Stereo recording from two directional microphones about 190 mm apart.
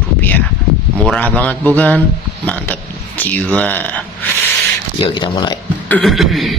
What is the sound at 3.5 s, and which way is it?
Speech, 10° left (ahead or behind).